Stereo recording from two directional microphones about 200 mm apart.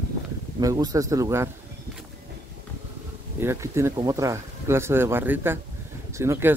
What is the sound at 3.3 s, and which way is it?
Speech, 15° right (ahead or behind).